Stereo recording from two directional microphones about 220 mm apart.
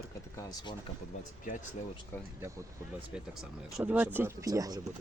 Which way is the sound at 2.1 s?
10° left (ahead or behind).